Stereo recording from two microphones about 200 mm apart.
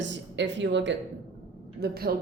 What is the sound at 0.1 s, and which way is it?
Speech, 60° right (ahead or behind).